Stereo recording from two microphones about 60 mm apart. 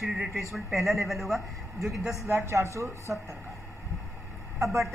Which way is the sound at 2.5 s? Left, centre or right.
Right.